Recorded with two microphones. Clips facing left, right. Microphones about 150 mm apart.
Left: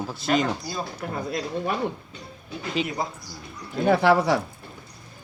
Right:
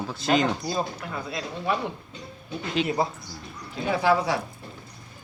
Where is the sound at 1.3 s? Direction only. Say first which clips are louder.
Left 6 dB; 45° left (ahead or behind).